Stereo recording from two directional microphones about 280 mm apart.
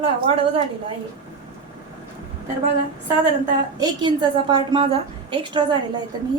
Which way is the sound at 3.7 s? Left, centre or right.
Centre.